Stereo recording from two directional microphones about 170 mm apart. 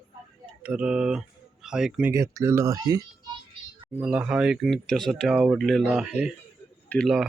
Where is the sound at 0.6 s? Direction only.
5° right (ahead or behind).